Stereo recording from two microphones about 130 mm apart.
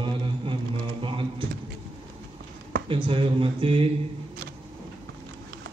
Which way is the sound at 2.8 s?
40° right (ahead or behind).